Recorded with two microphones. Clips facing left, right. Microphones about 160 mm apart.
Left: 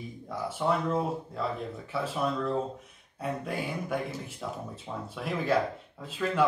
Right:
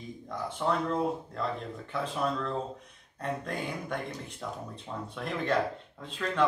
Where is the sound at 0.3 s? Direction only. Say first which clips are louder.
Left 2 dB; 5° left (ahead or behind).